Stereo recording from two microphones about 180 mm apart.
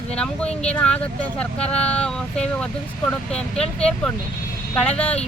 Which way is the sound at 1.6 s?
35° left (ahead or behind).